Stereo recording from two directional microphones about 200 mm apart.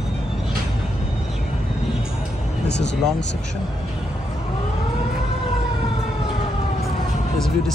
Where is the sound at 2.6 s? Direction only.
60° left (ahead or behind).